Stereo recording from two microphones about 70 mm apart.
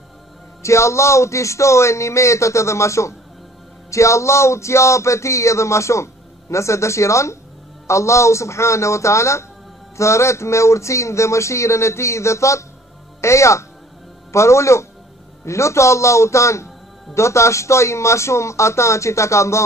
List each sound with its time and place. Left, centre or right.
0.6 s speech: left